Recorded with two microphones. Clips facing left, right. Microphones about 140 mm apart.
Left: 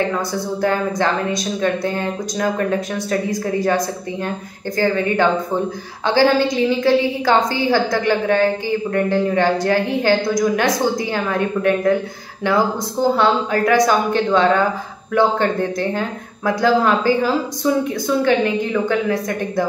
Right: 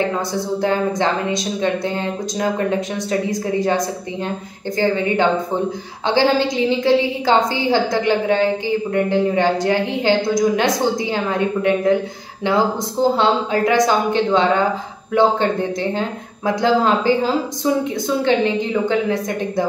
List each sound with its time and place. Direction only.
0.1 s a woman's voice: 20° right (ahead or behind)